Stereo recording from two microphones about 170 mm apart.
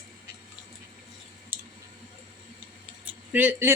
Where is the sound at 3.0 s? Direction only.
10° right (ahead or behind).